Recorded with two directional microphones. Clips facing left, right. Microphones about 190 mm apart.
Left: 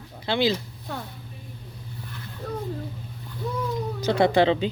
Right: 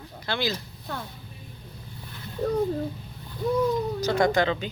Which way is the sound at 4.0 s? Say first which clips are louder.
Left 5 dB; 30° left (ahead or behind).